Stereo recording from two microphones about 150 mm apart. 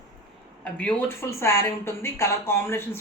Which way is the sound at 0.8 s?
15° left (ahead or behind).